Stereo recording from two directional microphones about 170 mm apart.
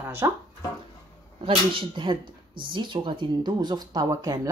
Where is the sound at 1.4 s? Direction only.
30° right (ahead or behind).